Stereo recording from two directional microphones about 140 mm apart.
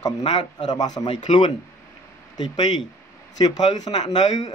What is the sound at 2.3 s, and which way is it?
Speech, 30° left (ahead or behind).